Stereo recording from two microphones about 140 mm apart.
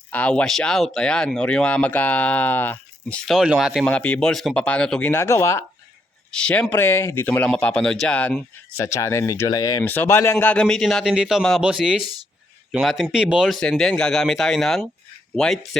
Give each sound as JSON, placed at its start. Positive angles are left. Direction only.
{"t": 0.1, "sound": "speech", "side_deg": 10}
{"t": 3.3, "sound": "a man's voice", "side_deg": -5}
{"t": 5.2, "sound": "speech", "side_deg": 20}
{"t": 6.3, "sound": "speech", "side_deg": 5}
{"t": 8.7, "sound": "speech", "side_deg": 20}
{"t": 9.8, "sound": "a man's voice", "side_deg": 15}